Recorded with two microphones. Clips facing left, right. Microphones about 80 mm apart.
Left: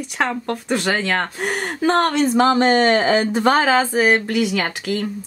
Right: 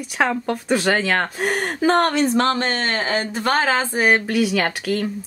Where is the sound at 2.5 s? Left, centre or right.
Centre.